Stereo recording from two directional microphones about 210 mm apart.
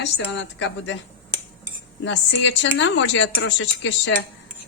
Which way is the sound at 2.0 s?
60° left (ahead or behind).